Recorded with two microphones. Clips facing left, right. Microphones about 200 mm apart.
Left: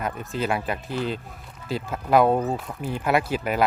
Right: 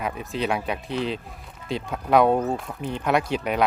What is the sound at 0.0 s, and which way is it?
Speech, centre (ahead or behind).